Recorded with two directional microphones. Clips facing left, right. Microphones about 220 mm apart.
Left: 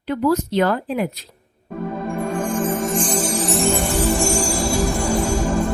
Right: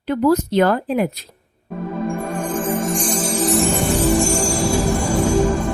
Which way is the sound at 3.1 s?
Centre (ahead or behind).